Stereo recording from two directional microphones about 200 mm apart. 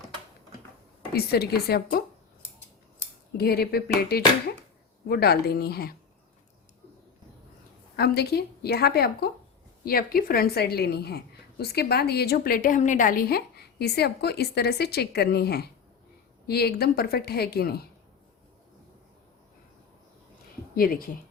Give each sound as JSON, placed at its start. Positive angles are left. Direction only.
{"t": 1.1, "sound": "a woman's voice", "side_deg": 50}
{"t": 3.3, "sound": "a woman's voice", "side_deg": 50}
{"t": 7.9, "sound": "a woman's voice", "side_deg": 55}
{"t": 20.7, "sound": "a woman's voice", "side_deg": 45}